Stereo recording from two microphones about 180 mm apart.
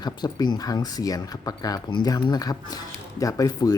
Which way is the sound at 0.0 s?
20° left (ahead or behind).